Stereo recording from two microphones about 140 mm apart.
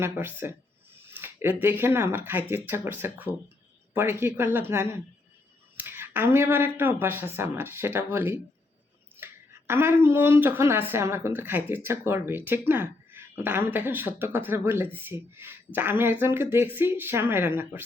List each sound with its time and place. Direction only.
0.0 s speech: 15° right (ahead or behind)